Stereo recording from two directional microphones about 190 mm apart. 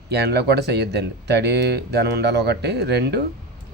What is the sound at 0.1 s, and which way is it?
Speech, 60° right (ahead or behind).